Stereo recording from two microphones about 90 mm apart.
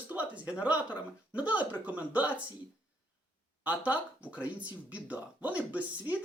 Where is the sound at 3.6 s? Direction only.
15° right (ahead or behind).